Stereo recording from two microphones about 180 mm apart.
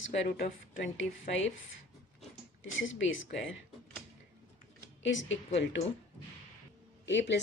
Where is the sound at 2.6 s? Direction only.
90° left.